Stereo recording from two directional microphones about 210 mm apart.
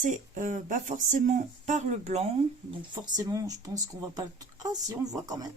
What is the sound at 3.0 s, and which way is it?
Speech, 20° right (ahead or behind).